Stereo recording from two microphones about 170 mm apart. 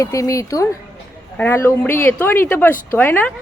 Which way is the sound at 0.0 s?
20° left (ahead or behind).